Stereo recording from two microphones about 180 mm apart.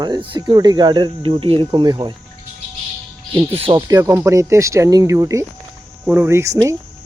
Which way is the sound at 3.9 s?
15° right (ahead or behind).